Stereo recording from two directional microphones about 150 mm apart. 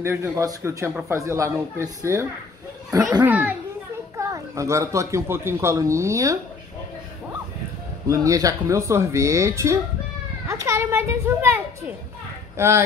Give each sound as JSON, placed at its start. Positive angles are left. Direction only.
{"t": 0.0, "sound": "speech", "side_deg": -20}
{"t": 3.3, "sound": "speech", "side_deg": -10}
{"t": 8.1, "sound": "speech", "side_deg": -20}